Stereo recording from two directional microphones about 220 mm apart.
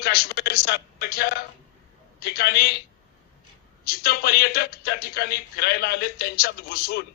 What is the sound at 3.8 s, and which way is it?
A man's voice, 45° left (ahead or behind).